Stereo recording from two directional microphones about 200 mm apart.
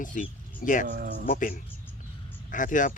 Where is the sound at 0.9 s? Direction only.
45° right (ahead or behind).